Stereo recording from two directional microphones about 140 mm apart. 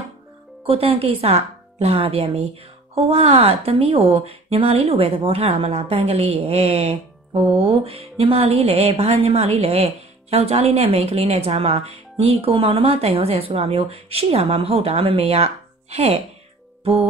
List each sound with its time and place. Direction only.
0.7 s speech: 45° right (ahead or behind)